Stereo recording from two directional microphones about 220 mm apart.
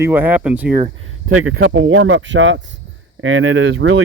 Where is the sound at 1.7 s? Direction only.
60° right (ahead or behind).